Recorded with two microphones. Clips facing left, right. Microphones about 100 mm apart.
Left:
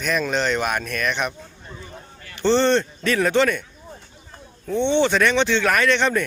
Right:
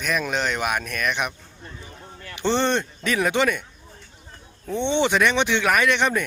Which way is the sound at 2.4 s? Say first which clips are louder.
Left 4 dB; 15° right (ahead or behind).